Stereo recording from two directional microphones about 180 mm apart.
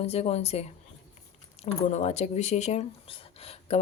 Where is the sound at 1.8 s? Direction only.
35° left (ahead or behind).